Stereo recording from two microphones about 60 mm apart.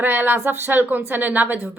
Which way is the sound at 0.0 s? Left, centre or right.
Right.